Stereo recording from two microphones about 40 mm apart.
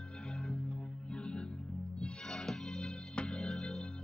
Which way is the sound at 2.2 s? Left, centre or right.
Centre.